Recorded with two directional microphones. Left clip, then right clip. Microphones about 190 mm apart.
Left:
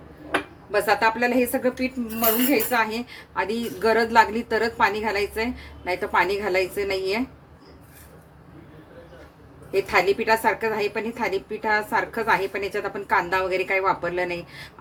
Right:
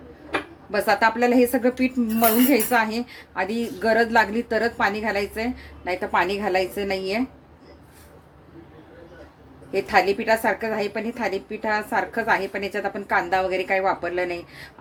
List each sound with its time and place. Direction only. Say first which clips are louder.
0.7 s a woman's voice: right 1 dB; 25° right (ahead or behind)
9.7 s a woman's voice: right 1 dB; 15° right (ahead or behind)